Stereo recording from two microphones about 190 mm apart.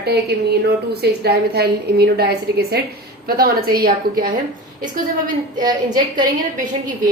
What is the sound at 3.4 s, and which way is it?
Speech, 50° right (ahead or behind).